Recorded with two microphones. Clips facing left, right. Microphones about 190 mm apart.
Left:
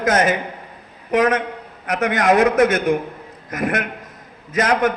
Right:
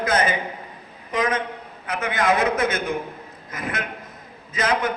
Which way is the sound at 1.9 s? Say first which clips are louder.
Left 5 dB; 80° left.